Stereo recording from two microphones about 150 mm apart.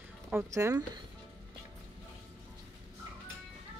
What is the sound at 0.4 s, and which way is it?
Speech, 20° right (ahead or behind).